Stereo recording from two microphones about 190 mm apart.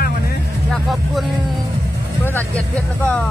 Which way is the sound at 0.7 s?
Centre (ahead or behind).